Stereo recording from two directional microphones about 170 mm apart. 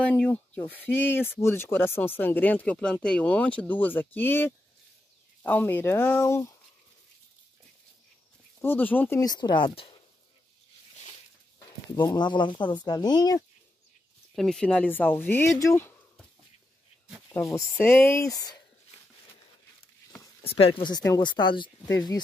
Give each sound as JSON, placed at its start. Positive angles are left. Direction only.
{"t": 0.0, "sound": "speech", "side_deg": 10}
{"t": 8.5, "sound": "speech", "side_deg": 10}
{"t": 9.2, "sound": "speech", "side_deg": 25}
{"t": 11.9, "sound": "speech", "side_deg": 25}
{"t": 14.3, "sound": "speech", "side_deg": 5}
{"t": 17.3, "sound": "speech", "side_deg": 20}
{"t": 20.4, "sound": "speech", "side_deg": 35}